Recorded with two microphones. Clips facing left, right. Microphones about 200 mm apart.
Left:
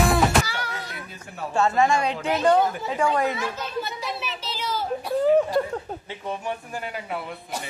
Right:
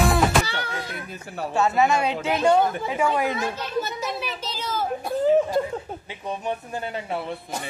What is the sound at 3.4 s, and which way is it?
A child's voice, 45° right (ahead or behind).